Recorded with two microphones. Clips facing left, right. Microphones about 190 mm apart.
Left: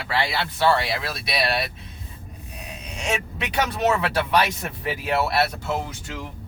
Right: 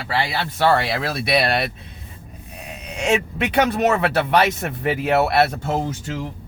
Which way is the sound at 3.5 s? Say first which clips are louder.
Right 4 dB; 55° right (ahead or behind).